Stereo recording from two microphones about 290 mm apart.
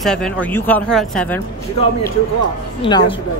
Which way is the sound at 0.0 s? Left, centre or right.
Centre.